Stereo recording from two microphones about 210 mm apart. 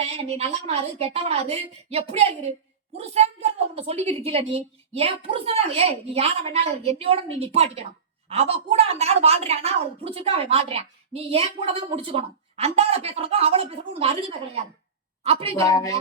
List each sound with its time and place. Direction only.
0.0 s a woman's voice: 30° right (ahead or behind)
15.5 s speech: 15° left (ahead or behind)